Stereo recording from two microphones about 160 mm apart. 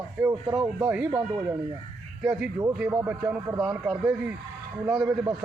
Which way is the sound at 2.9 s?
20° right (ahead or behind).